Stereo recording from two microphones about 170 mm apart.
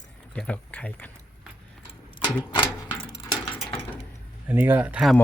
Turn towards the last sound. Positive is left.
turn(degrees=-5)  # may be behind; listen again after turning